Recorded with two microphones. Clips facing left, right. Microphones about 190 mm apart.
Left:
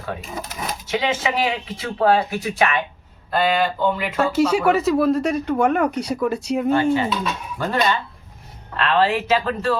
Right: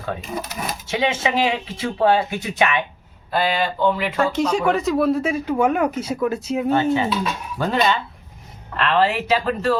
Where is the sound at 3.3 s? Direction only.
Centre (ahead or behind).